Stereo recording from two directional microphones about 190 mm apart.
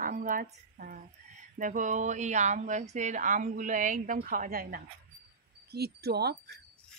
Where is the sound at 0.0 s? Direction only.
45° right (ahead or behind).